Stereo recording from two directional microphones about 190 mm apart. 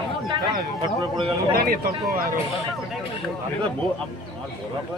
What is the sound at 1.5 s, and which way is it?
Speech, 50° right (ahead or behind).